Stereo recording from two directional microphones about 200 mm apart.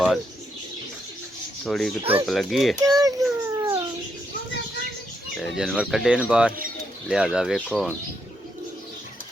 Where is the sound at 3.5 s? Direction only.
15° right (ahead or behind).